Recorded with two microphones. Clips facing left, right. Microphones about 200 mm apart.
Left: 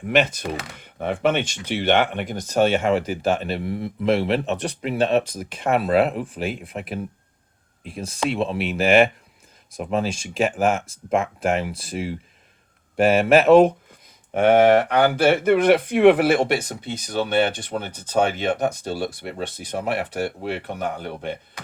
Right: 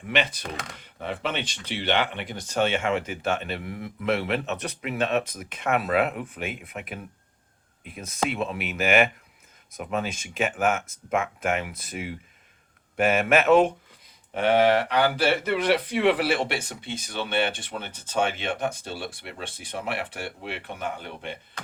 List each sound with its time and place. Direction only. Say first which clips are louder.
0.1 s speech: left 6 dB; 45° left (ahead or behind)
0.4 s speech: left 6 dB; 5° left (ahead or behind)
0.8 s speech: left 9 dB; 50° left (ahead or behind)
14.3 s speech: left 5 dB; 50° left (ahead or behind)